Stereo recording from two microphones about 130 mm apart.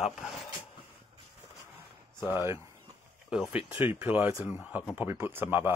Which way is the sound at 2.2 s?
30° left (ahead or behind).